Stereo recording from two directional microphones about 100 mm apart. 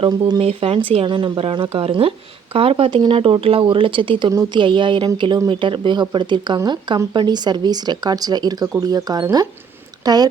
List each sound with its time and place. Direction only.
0.0 s speech: 60° right (ahead or behind)
0.4 s speech: 70° right (ahead or behind)
1.0 s speech: 55° right (ahead or behind)
1.7 s speech: 70° right (ahead or behind); by 10.2 s 40° right (ahead or behind)